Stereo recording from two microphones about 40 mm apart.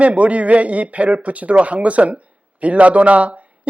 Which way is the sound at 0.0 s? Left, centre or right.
Right.